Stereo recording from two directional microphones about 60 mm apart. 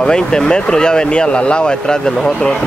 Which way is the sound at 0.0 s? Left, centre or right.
Centre.